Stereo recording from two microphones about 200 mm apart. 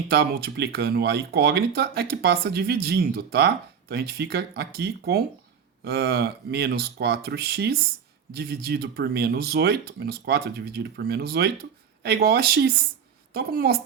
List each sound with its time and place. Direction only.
0.1 s speech: 50° right (ahead or behind)